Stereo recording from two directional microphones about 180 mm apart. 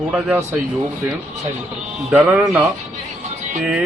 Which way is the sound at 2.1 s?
10° right (ahead or behind).